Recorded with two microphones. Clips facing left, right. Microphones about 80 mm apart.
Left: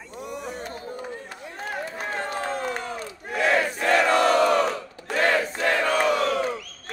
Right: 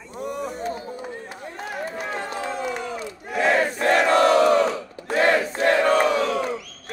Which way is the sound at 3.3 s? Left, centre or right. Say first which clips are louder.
Right 2 dB; right.